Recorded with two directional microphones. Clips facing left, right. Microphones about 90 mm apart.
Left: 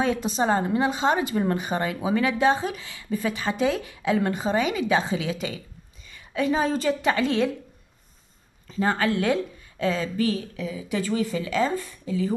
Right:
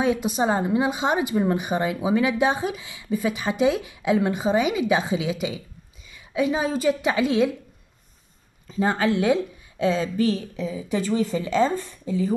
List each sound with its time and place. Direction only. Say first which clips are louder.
0.0 s a woman's voice: right 2 dB; 10° right (ahead or behind)
8.7 s speech: right 2 dB; 20° right (ahead or behind)